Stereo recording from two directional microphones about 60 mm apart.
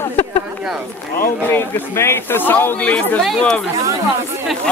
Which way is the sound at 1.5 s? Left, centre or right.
Left.